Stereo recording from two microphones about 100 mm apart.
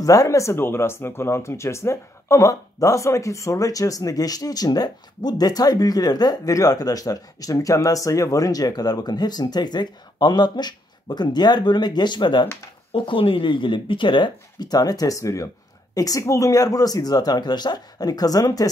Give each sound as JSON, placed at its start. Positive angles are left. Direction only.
{"t": 0.0, "sound": "speech", "side_deg": 35}